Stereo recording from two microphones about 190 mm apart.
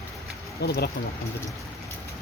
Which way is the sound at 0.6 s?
60° left (ahead or behind).